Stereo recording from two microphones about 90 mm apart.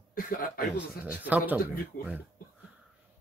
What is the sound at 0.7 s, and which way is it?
Speech, 15° right (ahead or behind).